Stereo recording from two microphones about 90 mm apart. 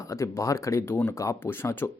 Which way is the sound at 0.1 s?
35° left (ahead or behind).